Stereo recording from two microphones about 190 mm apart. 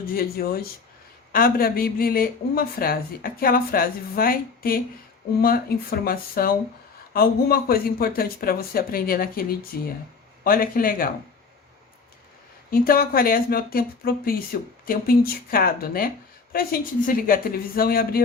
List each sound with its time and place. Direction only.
0.0 s speech: 50° left (ahead or behind)
12.7 s speech: 50° left (ahead or behind)